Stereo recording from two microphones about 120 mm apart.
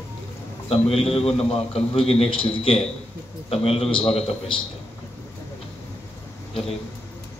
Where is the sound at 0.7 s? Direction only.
55° left (ahead or behind).